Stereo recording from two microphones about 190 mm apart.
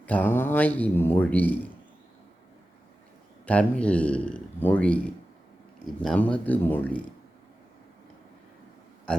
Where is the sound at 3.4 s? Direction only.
5° left (ahead or behind).